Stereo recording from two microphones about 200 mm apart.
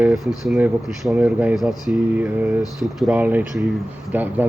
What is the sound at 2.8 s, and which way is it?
Speech, 5° right (ahead or behind).